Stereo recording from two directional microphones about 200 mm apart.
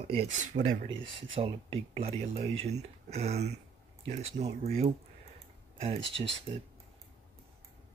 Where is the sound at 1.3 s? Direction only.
25° right (ahead or behind).